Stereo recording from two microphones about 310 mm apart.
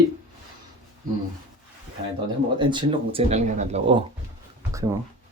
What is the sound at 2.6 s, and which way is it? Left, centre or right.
Speech, centre.